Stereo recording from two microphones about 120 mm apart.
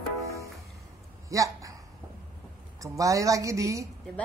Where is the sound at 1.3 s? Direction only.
25° right (ahead or behind).